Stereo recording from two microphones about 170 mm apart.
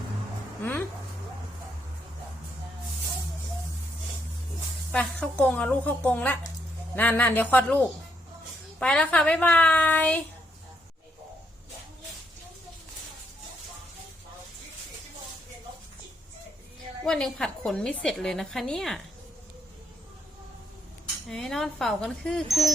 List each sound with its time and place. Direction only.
4.9 s speech: 5° left (ahead or behind)
17.1 s a woman's voice: 5° left (ahead or behind)
21.2 s a woman's voice: 5° left (ahead or behind)